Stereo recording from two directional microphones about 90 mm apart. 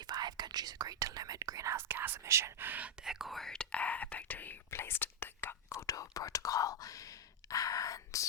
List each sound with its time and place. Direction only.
0.1 s whispering: 50° right (ahead or behind); by 2.9 s 20° right (ahead or behind)
3.0 s whispering: 5° right (ahead or behind); by 5.7 s 25° left (ahead or behind)
5.7 s whispering: 40° left (ahead or behind)